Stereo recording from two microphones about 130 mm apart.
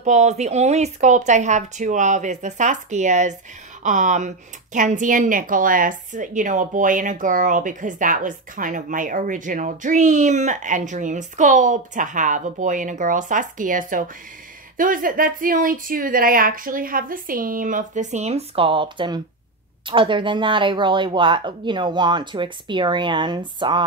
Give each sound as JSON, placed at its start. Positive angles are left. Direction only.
{"t": 0.0, "sound": "speech", "side_deg": -65}
{"t": 4.7, "sound": "a woman's voice", "side_deg": -85}